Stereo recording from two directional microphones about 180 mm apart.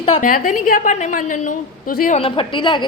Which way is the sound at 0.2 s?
50° left (ahead or behind).